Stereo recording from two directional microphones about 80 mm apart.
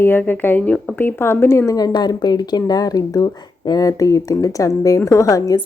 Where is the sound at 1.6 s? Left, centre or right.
Left.